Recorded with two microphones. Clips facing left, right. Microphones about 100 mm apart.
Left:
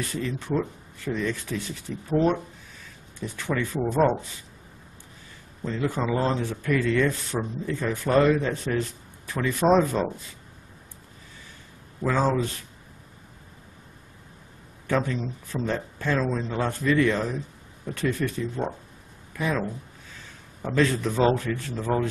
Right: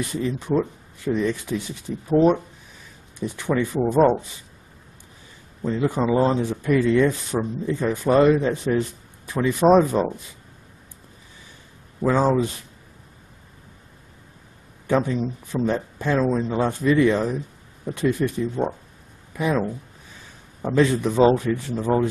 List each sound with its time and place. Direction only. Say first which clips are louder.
0.0 s speech: right 4 dB; 15° right (ahead or behind)
5.6 s speech: right 5 dB; 15° right (ahead or behind)
12.0 s speech: right 4 dB; 15° right (ahead or behind)
14.9 s speech: right 4 dB; 15° right (ahead or behind)